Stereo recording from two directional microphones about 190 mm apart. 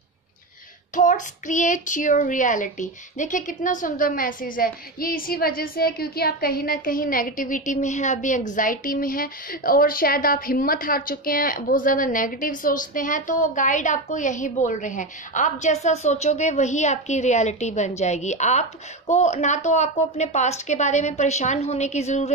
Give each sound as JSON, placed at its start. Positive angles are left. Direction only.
{"t": 0.9, "sound": "speech", "side_deg": 40}